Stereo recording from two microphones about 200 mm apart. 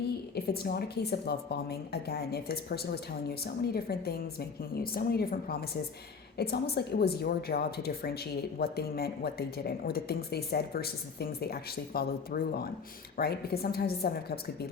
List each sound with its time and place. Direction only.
0.3 s a woman's voice: 50° left (ahead or behind)